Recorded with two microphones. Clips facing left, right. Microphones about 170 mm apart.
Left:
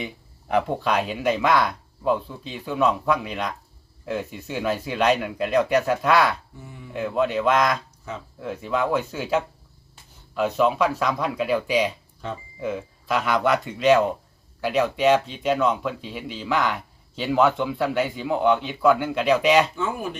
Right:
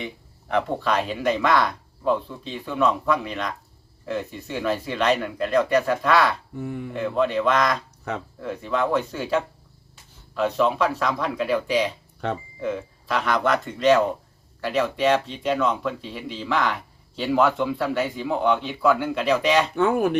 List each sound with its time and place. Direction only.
0.0 s speech: 5° left (ahead or behind)
6.6 s speech: 60° right (ahead or behind)
6.9 s a man's voice: 5° left (ahead or behind)
12.2 s speech: 65° right (ahead or behind)
12.5 s a man's voice: 5° left (ahead or behind)
19.7 s speech: 60° right (ahead or behind)